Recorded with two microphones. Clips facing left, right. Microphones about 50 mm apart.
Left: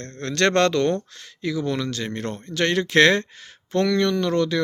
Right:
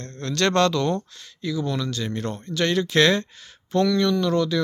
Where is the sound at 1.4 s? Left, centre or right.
Left.